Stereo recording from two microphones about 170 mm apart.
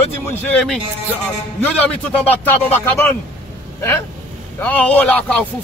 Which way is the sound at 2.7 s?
10° left (ahead or behind).